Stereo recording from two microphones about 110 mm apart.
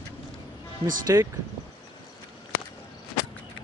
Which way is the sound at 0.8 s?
30° right (ahead or behind).